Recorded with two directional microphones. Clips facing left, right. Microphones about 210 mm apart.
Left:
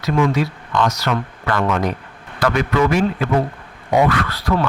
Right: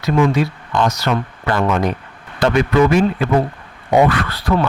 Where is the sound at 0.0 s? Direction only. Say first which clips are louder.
Right 2 dB; 25° right (ahead or behind).